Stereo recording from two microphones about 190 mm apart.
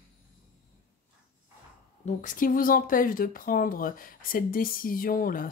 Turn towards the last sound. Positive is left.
turn(degrees=50)  # may be behind; listen again after turning